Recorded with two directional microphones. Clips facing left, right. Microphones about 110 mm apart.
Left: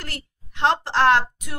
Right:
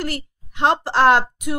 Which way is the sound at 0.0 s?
10° right (ahead or behind).